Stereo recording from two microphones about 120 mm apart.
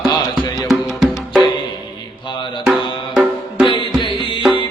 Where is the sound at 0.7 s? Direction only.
Centre (ahead or behind).